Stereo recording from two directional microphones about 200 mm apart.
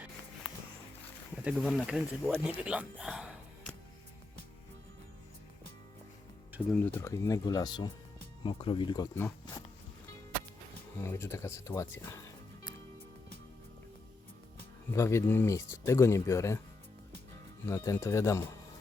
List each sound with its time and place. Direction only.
1.4 s speech: 5° right (ahead or behind)
6.7 s speech: 10° left (ahead or behind)
9.1 s speech: 10° left (ahead or behind)
10.9 s speech: 10° left (ahead or behind)
14.9 s speech: 15° left (ahead or behind)
17.7 s speech: 10° left (ahead or behind)